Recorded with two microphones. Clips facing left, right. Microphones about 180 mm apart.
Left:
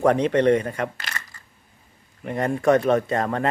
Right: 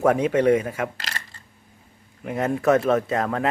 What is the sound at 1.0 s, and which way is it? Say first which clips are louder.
Coin: even; 30° right (ahead or behind).